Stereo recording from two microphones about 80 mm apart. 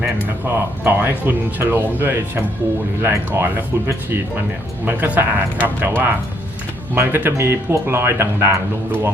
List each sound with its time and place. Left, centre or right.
0.4 s speech: right
6.9 s speech: right